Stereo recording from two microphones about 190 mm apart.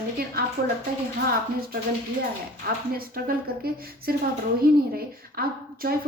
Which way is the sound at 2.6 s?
50° right (ahead or behind).